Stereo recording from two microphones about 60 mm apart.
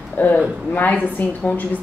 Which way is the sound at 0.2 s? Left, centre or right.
Left.